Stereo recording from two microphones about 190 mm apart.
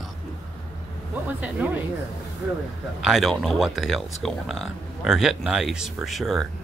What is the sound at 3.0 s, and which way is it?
Speech, centre (ahead or behind).